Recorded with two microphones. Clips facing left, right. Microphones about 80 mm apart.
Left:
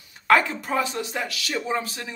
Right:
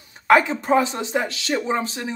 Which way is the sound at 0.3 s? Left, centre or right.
Right.